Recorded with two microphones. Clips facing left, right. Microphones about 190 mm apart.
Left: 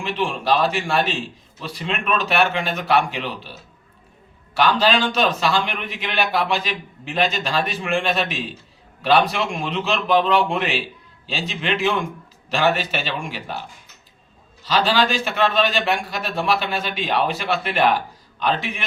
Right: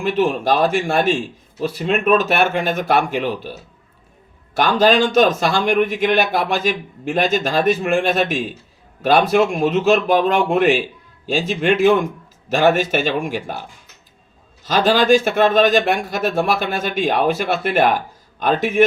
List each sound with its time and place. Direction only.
0.0 s a man's voice: 45° right (ahead or behind)
4.5 s a man's voice: 45° right (ahead or behind)